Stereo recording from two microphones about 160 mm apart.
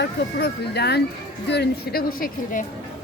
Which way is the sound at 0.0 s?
90° left.